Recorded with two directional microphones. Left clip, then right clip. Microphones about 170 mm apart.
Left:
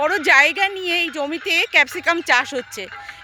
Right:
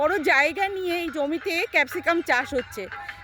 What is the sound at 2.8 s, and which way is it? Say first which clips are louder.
Speech: left 1 dB; 45° left (ahead or behind).